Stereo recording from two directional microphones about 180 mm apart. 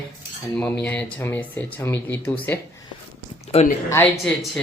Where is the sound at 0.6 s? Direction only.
10° left (ahead or behind).